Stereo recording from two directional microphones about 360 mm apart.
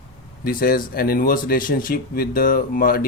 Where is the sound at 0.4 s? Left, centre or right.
Left.